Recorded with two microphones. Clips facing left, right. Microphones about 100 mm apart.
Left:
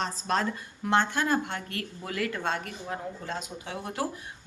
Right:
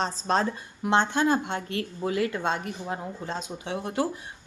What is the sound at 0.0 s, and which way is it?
A woman's voice, 25° right (ahead or behind).